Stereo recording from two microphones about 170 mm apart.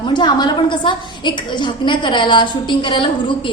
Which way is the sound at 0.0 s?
25° left (ahead or behind).